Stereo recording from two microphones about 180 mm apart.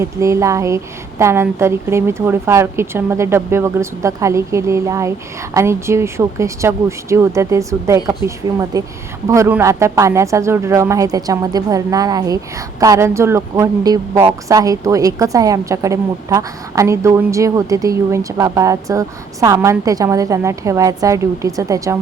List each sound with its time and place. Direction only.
0.0 s speech: 15° right (ahead or behind)